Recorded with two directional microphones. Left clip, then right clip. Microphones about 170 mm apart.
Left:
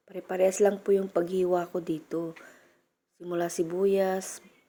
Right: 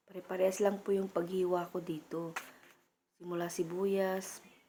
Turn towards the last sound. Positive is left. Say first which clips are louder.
# left 7 dB
turn(degrees=20)  # may be behind; listen again after turning